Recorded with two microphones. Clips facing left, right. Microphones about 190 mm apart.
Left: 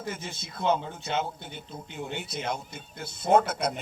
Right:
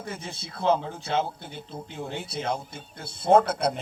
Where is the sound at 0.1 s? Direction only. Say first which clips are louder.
Even; 30° right (ahead or behind).